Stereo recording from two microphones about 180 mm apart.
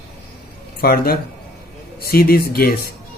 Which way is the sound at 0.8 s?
55° left (ahead or behind).